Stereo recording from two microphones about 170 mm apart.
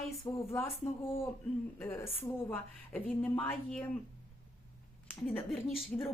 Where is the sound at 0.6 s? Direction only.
35° left (ahead or behind).